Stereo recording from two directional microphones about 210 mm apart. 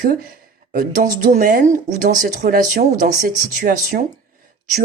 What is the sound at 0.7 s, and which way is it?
Speech, 40° right (ahead or behind).